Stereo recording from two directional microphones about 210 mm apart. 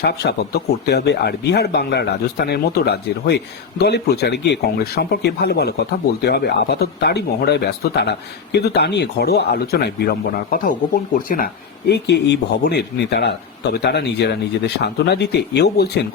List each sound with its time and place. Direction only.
0.0 s speech: 50° left (ahead or behind)